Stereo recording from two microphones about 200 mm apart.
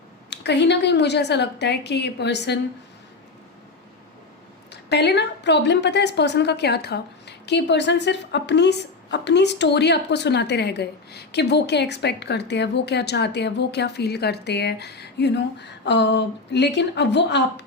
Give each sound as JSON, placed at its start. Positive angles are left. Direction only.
{"t": 0.3, "sound": "a woman's voice", "side_deg": 60}
{"t": 4.7, "sound": "a woman's voice", "side_deg": 55}